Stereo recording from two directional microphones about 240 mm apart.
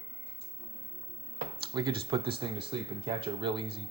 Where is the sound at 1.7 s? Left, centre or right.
Centre.